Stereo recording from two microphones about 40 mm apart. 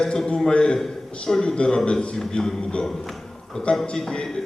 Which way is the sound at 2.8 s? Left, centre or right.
Centre.